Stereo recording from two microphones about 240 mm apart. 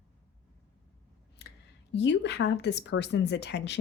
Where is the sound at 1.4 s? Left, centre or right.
Left.